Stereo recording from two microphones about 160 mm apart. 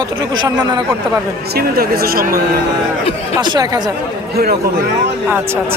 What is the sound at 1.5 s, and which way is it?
Speech, 70° right (ahead or behind).